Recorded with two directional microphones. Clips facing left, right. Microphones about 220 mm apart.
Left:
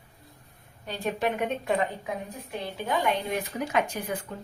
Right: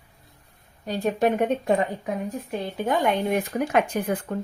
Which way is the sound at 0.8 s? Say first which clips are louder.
Right 6 dB; 40° right (ahead or behind).